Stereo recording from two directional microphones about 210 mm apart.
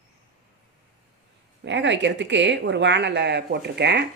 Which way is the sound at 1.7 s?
60° right (ahead or behind).